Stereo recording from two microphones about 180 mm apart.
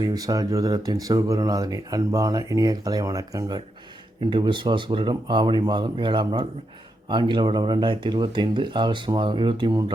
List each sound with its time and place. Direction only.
0.0 s speech: 20° right (ahead or behind)